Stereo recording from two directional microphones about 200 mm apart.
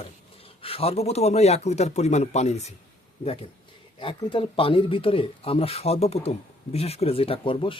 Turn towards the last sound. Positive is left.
turn(degrees=25)  # may be behind; listen again after turning